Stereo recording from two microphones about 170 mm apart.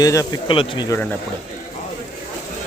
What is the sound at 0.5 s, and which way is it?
Speech, 30° left (ahead or behind).